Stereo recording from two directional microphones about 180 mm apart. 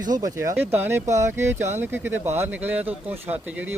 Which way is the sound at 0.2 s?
20° right (ahead or behind).